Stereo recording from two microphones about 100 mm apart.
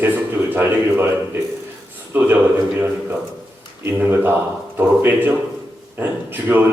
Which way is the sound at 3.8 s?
25° right (ahead or behind).